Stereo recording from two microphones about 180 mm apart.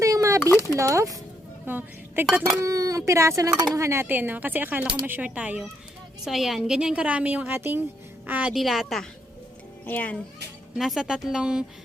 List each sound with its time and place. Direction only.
0.0 s a sound: 15° right (ahead or behind)
0.8 s a woman's voice: 15° right (ahead or behind); by 10.2 s 10° left (ahead or behind)
10.8 s speech: centre (ahead or behind)